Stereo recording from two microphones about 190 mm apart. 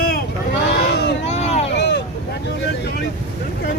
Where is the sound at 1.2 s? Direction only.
35° left (ahead or behind).